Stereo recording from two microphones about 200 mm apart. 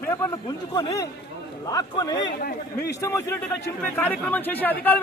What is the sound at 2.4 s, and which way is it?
Speech, 50° left (ahead or behind).